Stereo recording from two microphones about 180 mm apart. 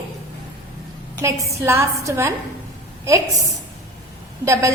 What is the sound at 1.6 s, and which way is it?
A woman's voice, 15° right (ahead or behind).